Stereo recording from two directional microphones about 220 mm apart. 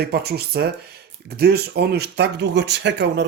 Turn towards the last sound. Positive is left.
turn(degrees=-55)  # may be behind; listen again after turning